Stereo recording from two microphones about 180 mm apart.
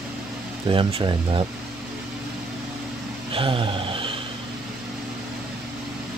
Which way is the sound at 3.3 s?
30° right (ahead or behind).